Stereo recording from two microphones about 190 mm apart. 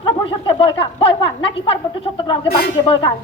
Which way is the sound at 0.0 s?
30° left (ahead or behind).